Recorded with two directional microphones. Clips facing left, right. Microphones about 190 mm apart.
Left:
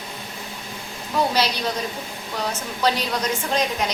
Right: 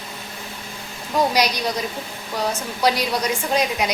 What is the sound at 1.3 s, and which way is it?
A woman's voice, 15° right (ahead or behind).